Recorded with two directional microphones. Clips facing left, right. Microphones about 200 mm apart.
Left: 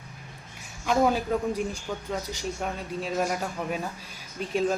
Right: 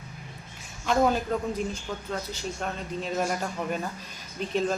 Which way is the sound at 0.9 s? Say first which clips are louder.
Even; 10° left (ahead or behind).